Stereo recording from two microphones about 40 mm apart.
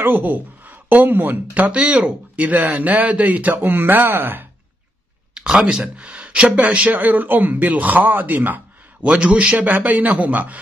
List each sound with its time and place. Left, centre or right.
0.0 s speech: right
1.7 s speech: right
2.3 s speech: right
3.6 s speech: right
5.3 s speech: centre
6.5 s speech: right
9.0 s speech: right
9.7 s speech: right